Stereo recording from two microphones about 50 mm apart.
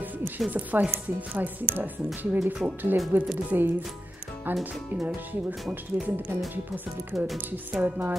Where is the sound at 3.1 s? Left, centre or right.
Right.